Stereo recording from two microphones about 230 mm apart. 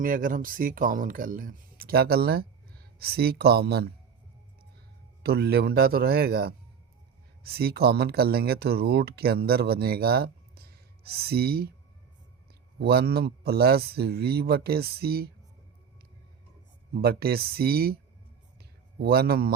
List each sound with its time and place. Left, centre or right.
0.0 s speech: right
5.2 s speech: right
12.8 s speech: right
16.9 s speech: right
18.9 s speech: right